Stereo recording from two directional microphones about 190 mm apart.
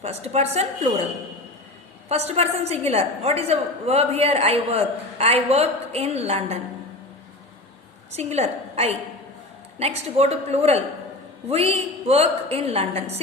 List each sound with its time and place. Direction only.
0.0 s a woman's voice: 35° right (ahead or behind)
2.0 s a woman's voice: 35° right (ahead or behind)
8.1 s a woman's voice: 35° right (ahead or behind)